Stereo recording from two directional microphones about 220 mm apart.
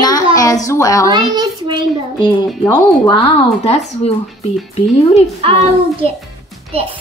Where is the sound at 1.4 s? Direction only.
20° right (ahead or behind).